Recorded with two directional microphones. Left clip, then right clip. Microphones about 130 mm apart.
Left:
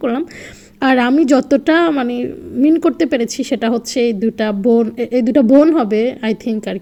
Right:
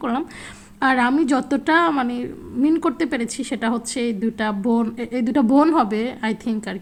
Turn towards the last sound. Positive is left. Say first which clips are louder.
# left 6 dB
turn(degrees=10)  # may be behind; listen again after turning